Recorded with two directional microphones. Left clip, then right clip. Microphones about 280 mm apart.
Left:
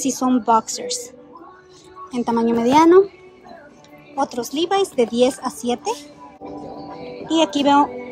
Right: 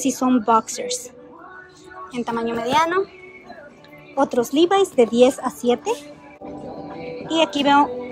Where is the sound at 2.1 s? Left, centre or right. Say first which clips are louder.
Left 5 dB; centre.